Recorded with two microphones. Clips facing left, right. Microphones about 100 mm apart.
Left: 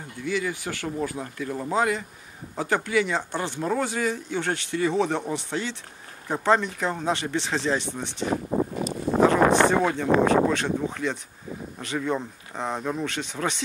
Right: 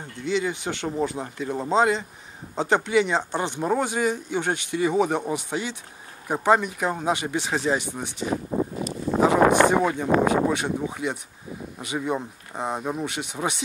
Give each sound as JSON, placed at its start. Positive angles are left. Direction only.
{"t": 0.2, "sound": "speech", "side_deg": -20}